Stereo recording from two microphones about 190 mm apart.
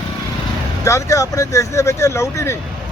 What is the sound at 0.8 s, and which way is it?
Speech, 15° left (ahead or behind).